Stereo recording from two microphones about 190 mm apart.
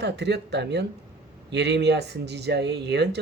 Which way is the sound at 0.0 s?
65° right (ahead or behind).